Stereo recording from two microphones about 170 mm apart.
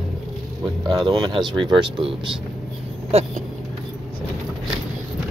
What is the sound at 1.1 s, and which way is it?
Speech, 25° right (ahead or behind).